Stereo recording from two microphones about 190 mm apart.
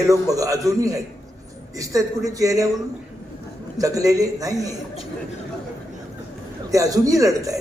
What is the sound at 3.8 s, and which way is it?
Speech, 20° right (ahead or behind).